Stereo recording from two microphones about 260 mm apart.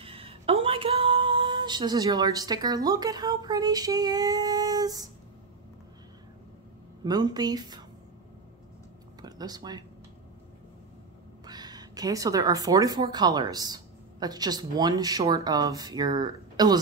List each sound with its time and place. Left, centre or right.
0.0 s a sound: right
7.1 s speech: centre
9.2 s speech: centre
11.4 s a woman's voice: centre